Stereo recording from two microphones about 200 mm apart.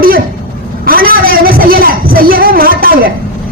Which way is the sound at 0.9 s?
45° right (ahead or behind).